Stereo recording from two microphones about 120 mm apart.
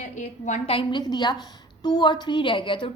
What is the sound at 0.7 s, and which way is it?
A woman's voice, 45° left (ahead or behind).